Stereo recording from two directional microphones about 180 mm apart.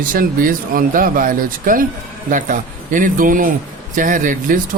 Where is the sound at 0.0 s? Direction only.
50° right (ahead or behind).